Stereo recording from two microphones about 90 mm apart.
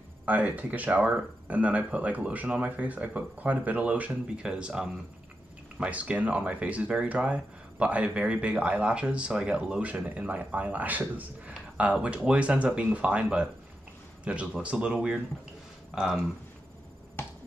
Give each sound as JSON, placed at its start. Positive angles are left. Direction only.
{"t": 0.2, "sound": "speech", "side_deg": -15}